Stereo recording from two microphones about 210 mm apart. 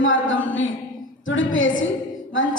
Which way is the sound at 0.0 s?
65° left (ahead or behind).